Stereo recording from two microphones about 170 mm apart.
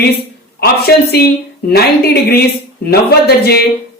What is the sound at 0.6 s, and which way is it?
Speech, 70° left (ahead or behind).